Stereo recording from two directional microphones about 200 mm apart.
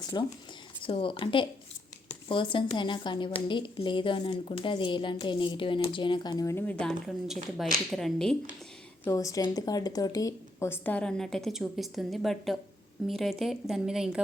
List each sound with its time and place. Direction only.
0.1 s a woman's voice: 20° left (ahead or behind)
6.4 s speech: 15° left (ahead or behind)
9.0 s speech: 15° left (ahead or behind); by 14.2 s 5° right (ahead or behind)